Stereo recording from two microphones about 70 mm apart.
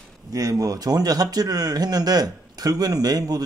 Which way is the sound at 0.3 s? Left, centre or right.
Right.